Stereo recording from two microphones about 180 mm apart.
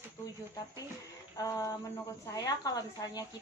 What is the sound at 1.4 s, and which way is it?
A woman's voice, 20° left (ahead or behind).